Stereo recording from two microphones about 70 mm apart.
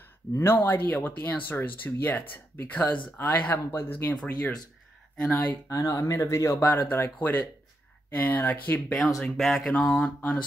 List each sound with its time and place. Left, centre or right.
0.3 s speech: left
5.2 s speech: left
5.7 s speech: left
6.6 s speech: left
9.2 s speech: centre
9.7 s a sound: centre